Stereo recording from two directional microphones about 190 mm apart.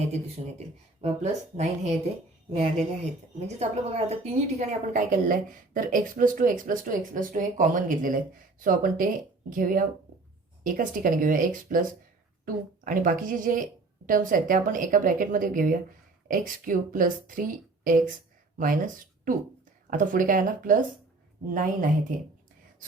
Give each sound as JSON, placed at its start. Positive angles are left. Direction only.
{"t": 1.0, "sound": "a woman's voice", "side_deg": -35}